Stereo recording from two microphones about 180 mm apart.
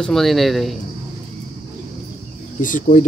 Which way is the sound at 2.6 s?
45° left (ahead or behind).